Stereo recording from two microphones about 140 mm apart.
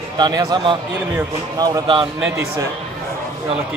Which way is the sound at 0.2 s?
30° right (ahead or behind).